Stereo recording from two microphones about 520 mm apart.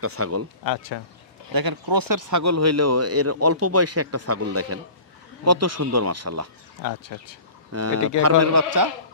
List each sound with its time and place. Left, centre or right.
0.0 s speech: right
0.7 s speech: left
1.5 s speech: right
6.8 s speech: left
7.7 s speech: right